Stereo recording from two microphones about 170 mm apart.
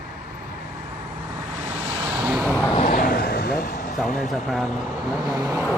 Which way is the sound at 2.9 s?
55° left (ahead or behind).